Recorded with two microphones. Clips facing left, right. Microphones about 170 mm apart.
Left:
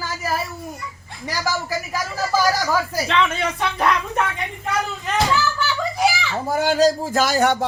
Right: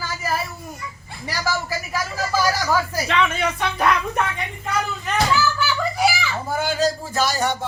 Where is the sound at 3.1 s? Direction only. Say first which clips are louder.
Even; centre (ahead or behind).